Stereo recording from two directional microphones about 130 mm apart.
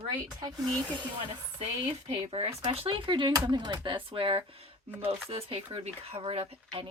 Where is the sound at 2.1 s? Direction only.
55° right (ahead or behind).